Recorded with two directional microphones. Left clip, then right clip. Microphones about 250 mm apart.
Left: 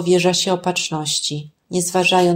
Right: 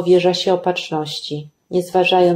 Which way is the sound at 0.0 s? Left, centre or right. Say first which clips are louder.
Right 2 dB; left.